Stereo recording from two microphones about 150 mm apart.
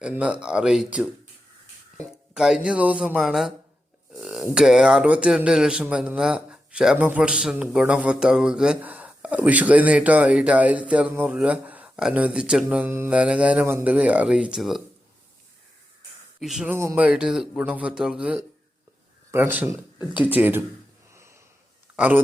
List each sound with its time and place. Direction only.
0.0 s a man's voice: 10° right (ahead or behind)
2.3 s speech: 5° right (ahead or behind)
4.1 s a sound: 5° right (ahead or behind)
4.5 s a man's voice: 5° right (ahead or behind)
16.4 s speech: 5° right (ahead or behind)
16.7 s a man's voice: 15° right (ahead or behind)
21.1 s snort: 20° right (ahead or behind)
21.9 s a man's voice: 10° right (ahead or behind)